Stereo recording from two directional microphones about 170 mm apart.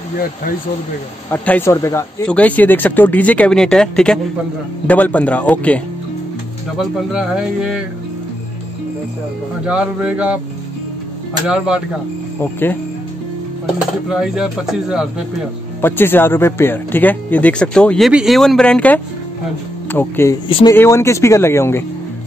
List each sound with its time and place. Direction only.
1.3 s speech: 10° left (ahead or behind)
6.8 s speech: 5° right (ahead or behind)
9.7 s speech: 5° right (ahead or behind)
11.4 s speech: 5° right (ahead or behind)
12.4 s speech: 10° left (ahead or behind)
14.0 s speech: 5° right (ahead or behind)
15.8 s speech: 10° left (ahead or behind)
20.4 s speech: 30° left (ahead or behind)
20.7 s speech: 15° left (ahead or behind)